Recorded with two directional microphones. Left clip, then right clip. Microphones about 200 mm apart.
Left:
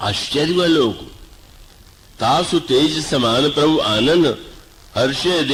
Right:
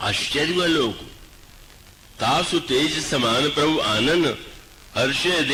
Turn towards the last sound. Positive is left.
turn(degrees=-45)  # may be behind; listen again after turning